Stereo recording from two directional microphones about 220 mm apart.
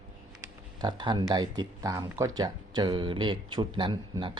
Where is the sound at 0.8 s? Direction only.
20° right (ahead or behind).